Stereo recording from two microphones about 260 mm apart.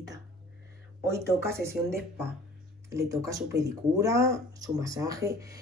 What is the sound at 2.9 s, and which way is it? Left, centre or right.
Speech, centre.